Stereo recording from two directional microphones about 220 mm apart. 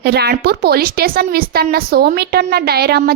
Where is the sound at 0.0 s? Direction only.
45° right (ahead or behind).